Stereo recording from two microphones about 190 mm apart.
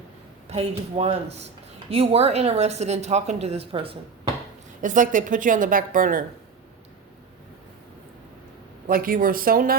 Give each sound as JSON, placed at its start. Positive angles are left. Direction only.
{"t": 0.5, "sound": "speech", "side_deg": -35}
{"t": 4.8, "sound": "a woman's voice", "side_deg": -45}
{"t": 8.9, "sound": "a woman's voice", "side_deg": -50}